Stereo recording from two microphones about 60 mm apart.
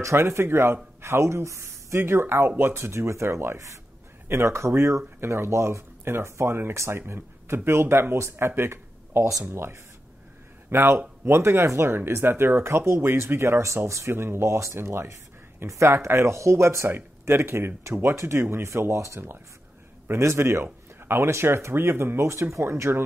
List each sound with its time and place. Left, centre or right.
0.0 s speech: right
6.7 s speech: right
7.0 s speech: right